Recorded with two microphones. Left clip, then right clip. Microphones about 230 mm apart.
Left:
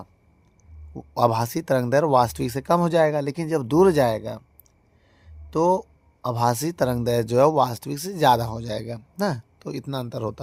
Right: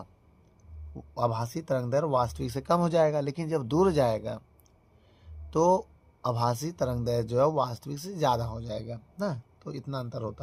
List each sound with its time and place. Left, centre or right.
0.9 s speech: left
5.5 s speech: centre; by 10.4 s left